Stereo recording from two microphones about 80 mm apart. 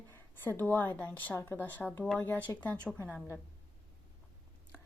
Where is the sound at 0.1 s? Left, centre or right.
Left.